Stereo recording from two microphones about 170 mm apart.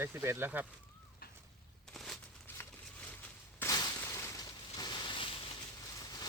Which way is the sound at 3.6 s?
20° left (ahead or behind).